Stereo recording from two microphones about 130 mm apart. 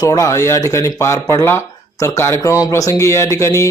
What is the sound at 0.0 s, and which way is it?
A man's voice, 25° left (ahead or behind).